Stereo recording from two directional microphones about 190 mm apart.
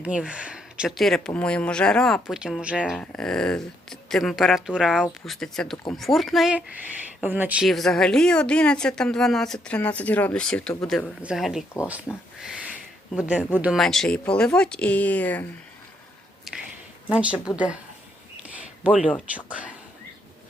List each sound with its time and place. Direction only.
0.0 s a woman's voice: 5° right (ahead or behind)
16.5 s a sound: centre (ahead or behind)
17.3 s speech: 20° left (ahead or behind)
18.8 s speech: 5° right (ahead or behind)